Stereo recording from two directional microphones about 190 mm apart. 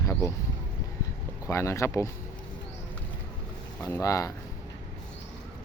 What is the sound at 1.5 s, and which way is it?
Speech, 15° left (ahead or behind).